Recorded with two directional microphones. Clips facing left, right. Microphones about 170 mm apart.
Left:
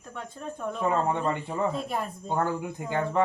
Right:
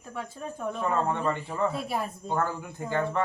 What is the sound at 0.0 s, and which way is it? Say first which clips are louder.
Speech: right 2 dB; 5° right (ahead or behind).